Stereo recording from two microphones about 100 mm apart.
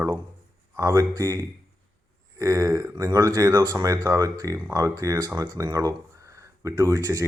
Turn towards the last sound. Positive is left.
turn(degrees=-35)  # may be behind; listen again after turning